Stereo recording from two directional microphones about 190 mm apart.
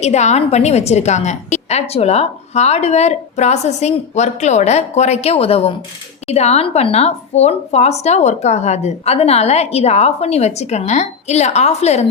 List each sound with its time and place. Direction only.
0.0 s a woman's voice: 35° left (ahead or behind)